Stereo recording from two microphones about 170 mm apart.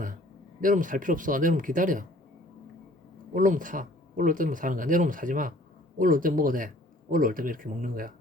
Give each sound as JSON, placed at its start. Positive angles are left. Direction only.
{"t": 0.6, "sound": "speech", "side_deg": -50}
{"t": 3.3, "sound": "speech", "side_deg": -50}